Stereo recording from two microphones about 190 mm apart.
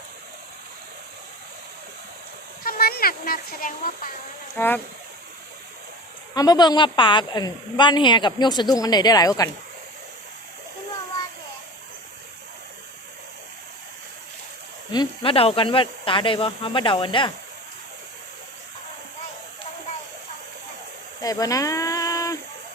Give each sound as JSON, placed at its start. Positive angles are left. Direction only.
{"t": 2.6, "sound": "speech", "side_deg": 50}
{"t": 4.5, "sound": "speech", "side_deg": 10}
{"t": 6.3, "sound": "a woman's voice", "side_deg": 20}
{"t": 14.9, "sound": "a woman's voice", "side_deg": 30}
{"t": 21.2, "sound": "a sound", "side_deg": 20}